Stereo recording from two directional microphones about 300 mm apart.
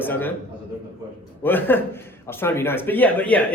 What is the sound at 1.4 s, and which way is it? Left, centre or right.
A man's voice, centre.